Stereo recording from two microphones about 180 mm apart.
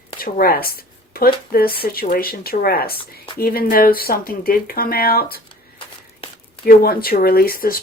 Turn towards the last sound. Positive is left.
turn(degrees=55)  # may be behind; listen again after turning